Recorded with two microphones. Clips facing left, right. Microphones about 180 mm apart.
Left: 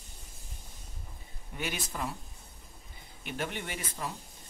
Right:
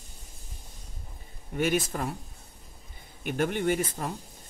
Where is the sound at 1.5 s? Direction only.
50° right (ahead or behind).